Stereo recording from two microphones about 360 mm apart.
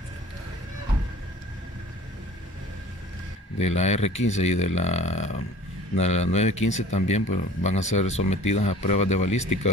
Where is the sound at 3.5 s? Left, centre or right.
Centre.